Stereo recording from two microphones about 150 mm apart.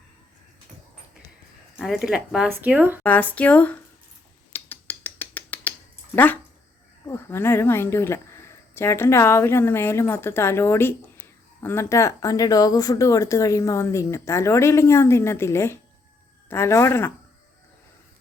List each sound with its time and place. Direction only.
1.7 s speech: centre (ahead or behind)
3.0 s a woman's voice: 10° left (ahead or behind)
4.5 s a sound: 15° left (ahead or behind)
6.1 s a woman's voice: 10° left (ahead or behind)